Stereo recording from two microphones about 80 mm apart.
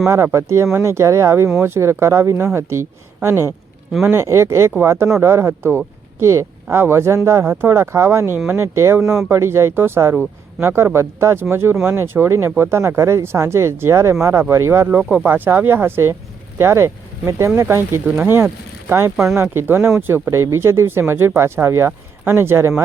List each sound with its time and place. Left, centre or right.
0.1 s speech: right
14.8 s speech: centre